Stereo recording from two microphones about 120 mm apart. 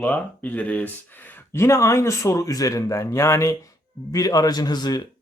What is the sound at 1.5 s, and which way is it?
Speech, 25° left (ahead or behind).